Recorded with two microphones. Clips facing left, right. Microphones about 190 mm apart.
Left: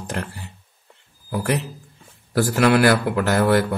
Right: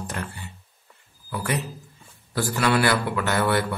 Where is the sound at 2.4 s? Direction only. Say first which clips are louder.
Left 6 dB; 55° left (ahead or behind).